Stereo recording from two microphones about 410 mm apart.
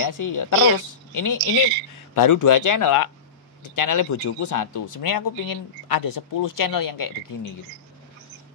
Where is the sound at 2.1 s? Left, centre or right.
Left.